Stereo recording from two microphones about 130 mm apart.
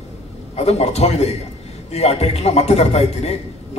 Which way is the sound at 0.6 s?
55° left (ahead or behind).